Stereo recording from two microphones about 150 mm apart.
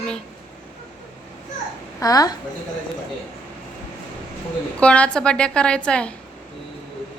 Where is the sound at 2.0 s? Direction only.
25° left (ahead or behind).